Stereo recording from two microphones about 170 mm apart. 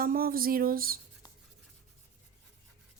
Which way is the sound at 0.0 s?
60° right (ahead or behind).